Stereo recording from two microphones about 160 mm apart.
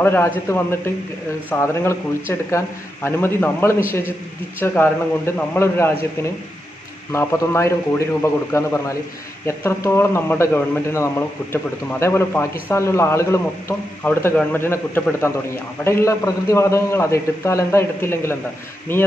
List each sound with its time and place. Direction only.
0.0 s a man's voice: 10° left (ahead or behind)
7.1 s a man's voice: 15° left (ahead or behind)